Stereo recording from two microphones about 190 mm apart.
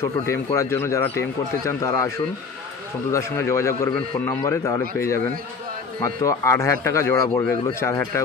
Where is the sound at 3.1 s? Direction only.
15° left (ahead or behind).